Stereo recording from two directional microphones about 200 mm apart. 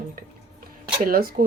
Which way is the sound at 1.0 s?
45° right (ahead or behind).